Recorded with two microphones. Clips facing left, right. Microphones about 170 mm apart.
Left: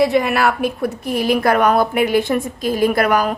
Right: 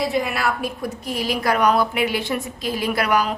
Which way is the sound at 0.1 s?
65° left (ahead or behind).